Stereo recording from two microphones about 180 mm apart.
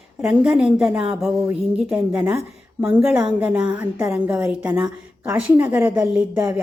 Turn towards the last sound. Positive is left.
turn(degrees=-5)  # may be behind; listen again after turning